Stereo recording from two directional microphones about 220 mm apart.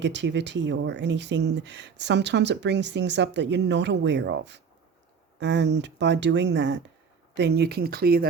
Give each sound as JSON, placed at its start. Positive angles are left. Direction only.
{"t": 0.0, "sound": "speech", "side_deg": -55}